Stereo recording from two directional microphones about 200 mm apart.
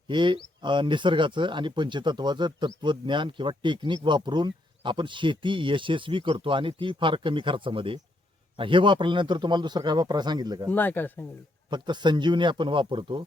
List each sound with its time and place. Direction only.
0.1 s speech: 25° right (ahead or behind)
10.7 s speech: 10° left (ahead or behind)
11.7 s speech: 20° right (ahead or behind)